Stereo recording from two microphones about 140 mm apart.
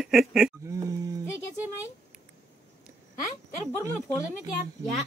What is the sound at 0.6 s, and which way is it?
Livestock, 25° right (ahead or behind).